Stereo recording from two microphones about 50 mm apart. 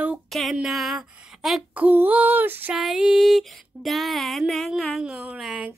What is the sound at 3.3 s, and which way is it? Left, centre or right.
Music, centre.